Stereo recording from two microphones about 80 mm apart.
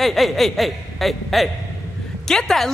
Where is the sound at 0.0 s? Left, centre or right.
Centre.